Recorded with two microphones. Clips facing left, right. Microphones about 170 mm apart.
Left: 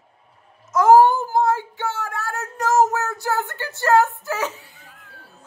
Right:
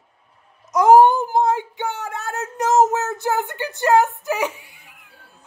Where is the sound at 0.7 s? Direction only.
15° right (ahead or behind).